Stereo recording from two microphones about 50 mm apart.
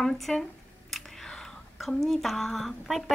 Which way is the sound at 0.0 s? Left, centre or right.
Centre.